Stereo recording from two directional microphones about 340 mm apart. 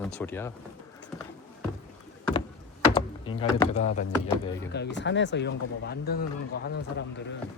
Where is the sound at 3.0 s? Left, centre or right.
Centre.